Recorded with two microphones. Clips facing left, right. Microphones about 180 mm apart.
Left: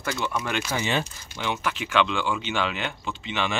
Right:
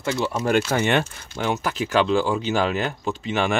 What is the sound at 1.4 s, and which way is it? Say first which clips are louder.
Speech: right 5 dB; 40° right (ahead or behind).